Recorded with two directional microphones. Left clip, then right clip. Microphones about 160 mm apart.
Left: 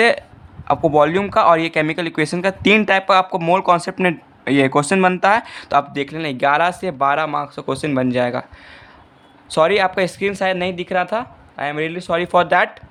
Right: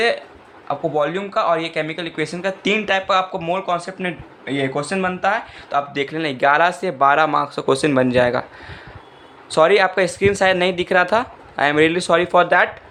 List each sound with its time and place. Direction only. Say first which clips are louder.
0.7 s speech: left 6 dB; 45° left (ahead or behind)
5.9 s speech: right 1 dB; 30° left (ahead or behind)
9.5 s speech: right 1 dB; 25° left (ahead or behind); by 12.1 s centre (ahead or behind)
12.1 s speech: left 1 dB; 20° left (ahead or behind)